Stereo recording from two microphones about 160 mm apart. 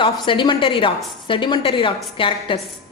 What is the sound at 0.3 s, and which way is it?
A woman's voice, 30° left (ahead or behind).